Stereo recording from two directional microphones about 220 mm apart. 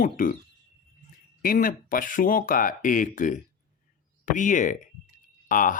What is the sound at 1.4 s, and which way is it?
Speech, 40° left (ahead or behind).